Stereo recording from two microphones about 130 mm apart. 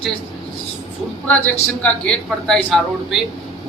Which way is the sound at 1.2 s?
10° left (ahead or behind).